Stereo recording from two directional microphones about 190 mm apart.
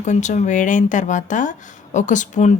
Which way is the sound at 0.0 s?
40° left (ahead or behind).